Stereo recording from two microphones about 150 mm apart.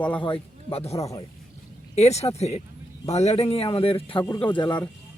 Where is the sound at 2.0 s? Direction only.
45° left (ahead or behind).